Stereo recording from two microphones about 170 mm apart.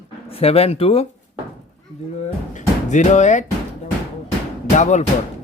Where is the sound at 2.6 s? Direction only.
45° left (ahead or behind).